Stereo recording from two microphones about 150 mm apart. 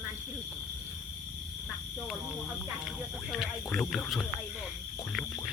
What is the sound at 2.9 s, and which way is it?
Speech, centre (ahead or behind).